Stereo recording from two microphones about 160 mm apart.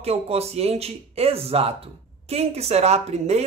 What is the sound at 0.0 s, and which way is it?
Speech, 40° right (ahead or behind).